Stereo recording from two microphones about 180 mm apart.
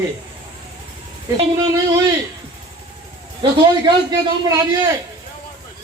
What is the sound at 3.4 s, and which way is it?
Speech, 20° right (ahead or behind).